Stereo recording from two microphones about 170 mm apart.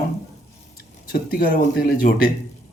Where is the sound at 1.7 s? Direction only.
60° left (ahead or behind).